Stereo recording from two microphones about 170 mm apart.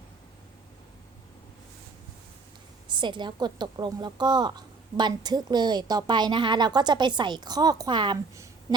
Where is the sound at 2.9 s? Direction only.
25° right (ahead or behind).